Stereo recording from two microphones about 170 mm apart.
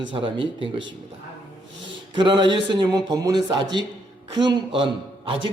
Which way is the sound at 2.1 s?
30° right (ahead or behind).